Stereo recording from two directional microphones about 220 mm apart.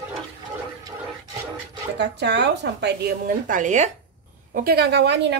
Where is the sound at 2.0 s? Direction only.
50° right (ahead or behind); by 3.9 s 30° right (ahead or behind).